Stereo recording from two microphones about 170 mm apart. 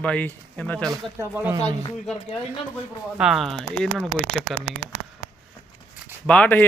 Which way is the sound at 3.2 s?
Centre (ahead or behind).